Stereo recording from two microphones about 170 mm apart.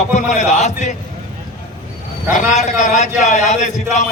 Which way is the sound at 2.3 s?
45° left (ahead or behind).